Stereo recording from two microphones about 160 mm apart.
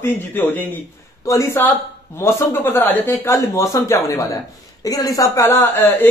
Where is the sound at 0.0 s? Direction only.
10° left (ahead or behind).